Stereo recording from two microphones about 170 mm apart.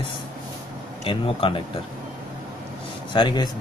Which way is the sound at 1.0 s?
30° left (ahead or behind).